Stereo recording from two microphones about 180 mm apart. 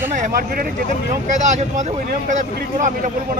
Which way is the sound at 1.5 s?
40° right (ahead or behind).